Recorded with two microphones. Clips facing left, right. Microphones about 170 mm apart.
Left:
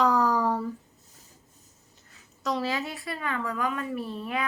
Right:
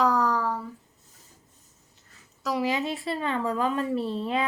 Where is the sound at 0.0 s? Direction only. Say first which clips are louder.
Even; centre (ahead or behind).